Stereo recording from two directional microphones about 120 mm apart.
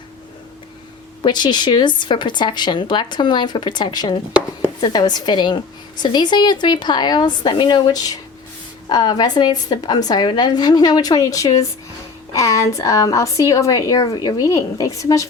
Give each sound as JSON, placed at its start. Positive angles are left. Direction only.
{"t": 1.2, "sound": "a woman's voice", "side_deg": 40}